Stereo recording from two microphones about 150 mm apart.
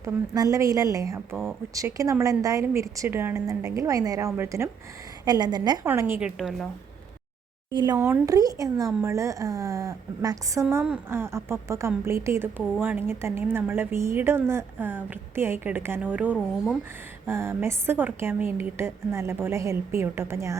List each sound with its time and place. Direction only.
0.0 s a woman's voice: 25° right (ahead or behind)
5.2 s a woman's voice: 30° right (ahead or behind)
5.8 s a woman's voice: 15° right (ahead or behind)
7.7 s a woman's voice: 30° right (ahead or behind)
7.9 s a woman's voice: 20° right (ahead or behind)